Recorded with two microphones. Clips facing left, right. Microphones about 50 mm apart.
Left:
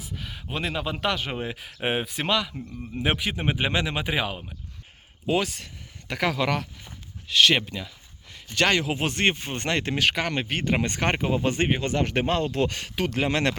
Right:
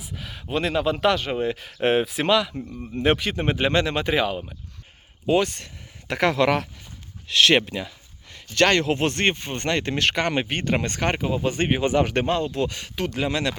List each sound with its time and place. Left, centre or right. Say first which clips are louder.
0.0 s speech: right 1 dB; centre
1.2 s speech: right 6 dB; centre
8.4 s speech: right 4 dB; centre
9.9 s speech: right 2 dB; centre
10.7 s speech: left 1 dB; centre
12.1 s speech: right 2 dB; centre
12.6 s speech: even; left